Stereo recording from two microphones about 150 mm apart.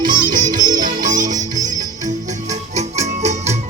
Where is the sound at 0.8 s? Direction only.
55° right (ahead or behind).